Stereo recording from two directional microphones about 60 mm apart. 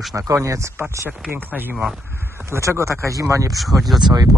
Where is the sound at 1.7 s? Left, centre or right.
Centre.